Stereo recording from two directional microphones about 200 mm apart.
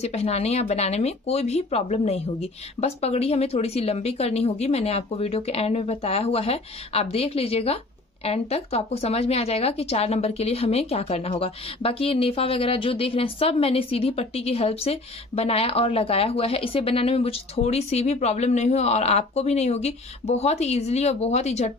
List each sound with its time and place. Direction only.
0.0 s a woman's voice: 30° left (ahead or behind)